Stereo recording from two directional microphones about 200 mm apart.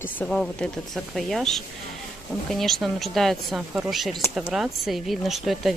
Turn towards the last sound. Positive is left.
turn(degrees=0)  # may be behind; listen again after turning